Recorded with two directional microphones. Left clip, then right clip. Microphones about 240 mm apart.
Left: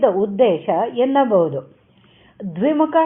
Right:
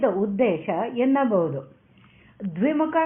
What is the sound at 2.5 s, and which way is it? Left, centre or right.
Speech, left.